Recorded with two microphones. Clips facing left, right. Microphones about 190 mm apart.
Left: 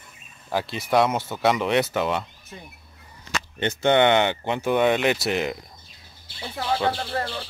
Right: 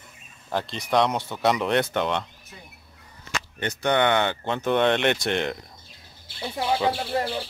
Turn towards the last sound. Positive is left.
turn(degrees=-15)  # may be behind; listen again after turning